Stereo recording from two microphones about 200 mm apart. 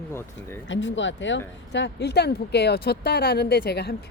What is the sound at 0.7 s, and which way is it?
Speech, 65° left (ahead or behind).